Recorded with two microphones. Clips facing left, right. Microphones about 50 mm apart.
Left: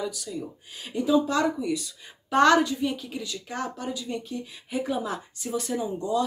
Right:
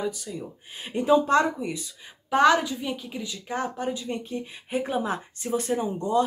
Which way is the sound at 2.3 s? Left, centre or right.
Centre.